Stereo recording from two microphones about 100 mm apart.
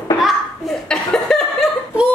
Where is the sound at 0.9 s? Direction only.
5° left (ahead or behind).